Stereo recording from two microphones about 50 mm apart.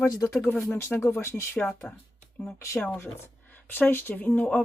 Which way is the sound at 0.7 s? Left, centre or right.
Left.